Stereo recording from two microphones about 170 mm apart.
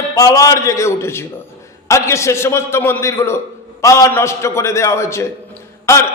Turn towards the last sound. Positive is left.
turn(degrees=15)  # may be behind; listen again after turning